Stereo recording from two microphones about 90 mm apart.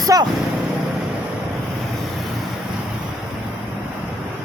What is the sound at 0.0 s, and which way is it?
Speech, 45° right (ahead or behind).